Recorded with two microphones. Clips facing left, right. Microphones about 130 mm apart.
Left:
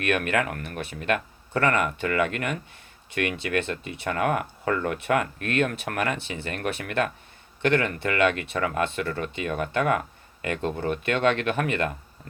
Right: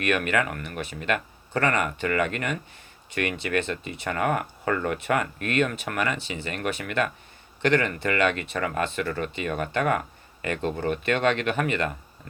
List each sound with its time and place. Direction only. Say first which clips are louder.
0.3 s speech: even; 60° left (ahead or behind)